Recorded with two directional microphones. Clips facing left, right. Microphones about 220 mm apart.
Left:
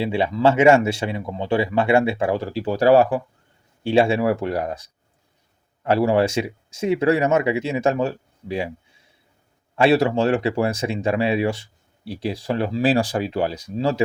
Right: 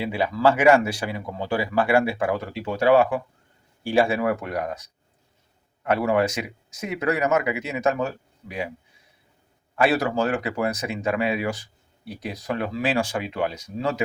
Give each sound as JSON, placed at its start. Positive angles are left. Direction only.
{"t": 0.0, "sound": "speech", "side_deg": 25}
{"t": 3.8, "sound": "speech", "side_deg": 25}
{"t": 9.7, "sound": "speech", "side_deg": 25}